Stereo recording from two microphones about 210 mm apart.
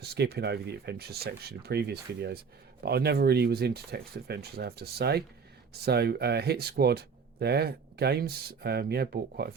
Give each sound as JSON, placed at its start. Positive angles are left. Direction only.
{"t": 0.0, "sound": "speech", "side_deg": -50}